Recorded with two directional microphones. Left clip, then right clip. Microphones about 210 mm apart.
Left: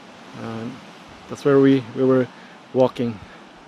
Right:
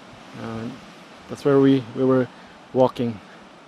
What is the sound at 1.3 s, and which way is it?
Speech, 5° right (ahead or behind).